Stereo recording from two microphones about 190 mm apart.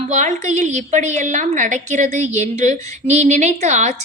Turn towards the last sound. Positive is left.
turn(degrees=-40)  # may be behind; listen again after turning